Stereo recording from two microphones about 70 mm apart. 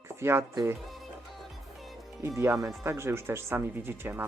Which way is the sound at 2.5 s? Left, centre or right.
Right.